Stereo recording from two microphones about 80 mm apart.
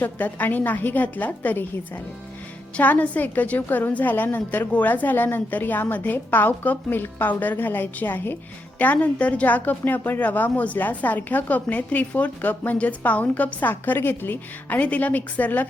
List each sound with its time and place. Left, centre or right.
0.0 s a woman's voice: left
2.7 s a woman's voice: centre